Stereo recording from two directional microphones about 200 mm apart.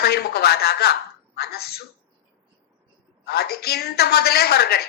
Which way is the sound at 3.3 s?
55° left (ahead or behind).